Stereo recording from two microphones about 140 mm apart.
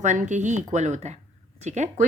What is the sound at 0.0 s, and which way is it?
A woman's voice, 60° right (ahead or behind).